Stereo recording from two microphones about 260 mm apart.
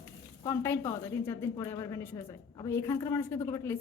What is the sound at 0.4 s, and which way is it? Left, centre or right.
A woman's voice, centre.